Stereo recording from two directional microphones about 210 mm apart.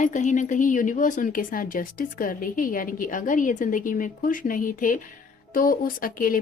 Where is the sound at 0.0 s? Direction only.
35° left (ahead or behind).